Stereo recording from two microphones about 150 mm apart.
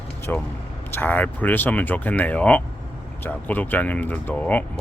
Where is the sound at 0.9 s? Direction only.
15° left (ahead or behind).